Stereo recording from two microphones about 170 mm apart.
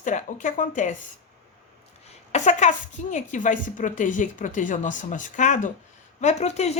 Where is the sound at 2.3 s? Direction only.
45° left (ahead or behind).